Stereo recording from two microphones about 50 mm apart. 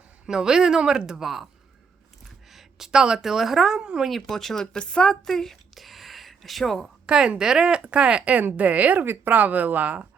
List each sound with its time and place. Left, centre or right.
0.3 s a woman's voice: centre
2.5 s a woman's voice: centre
4.0 s speech: centre
7.3 s speech: centre; by 10.1 s right